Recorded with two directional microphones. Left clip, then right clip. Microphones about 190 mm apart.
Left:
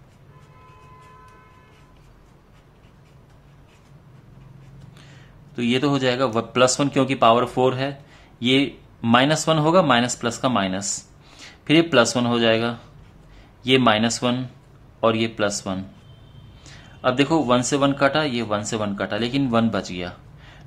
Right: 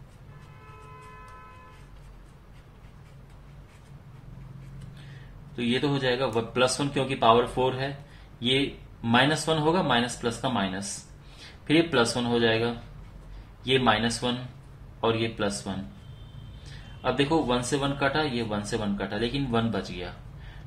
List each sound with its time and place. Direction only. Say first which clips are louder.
5.6 s speech: left 6 dB; 50° left (ahead or behind)
17.0 s speech: left 5 dB; 50° left (ahead or behind)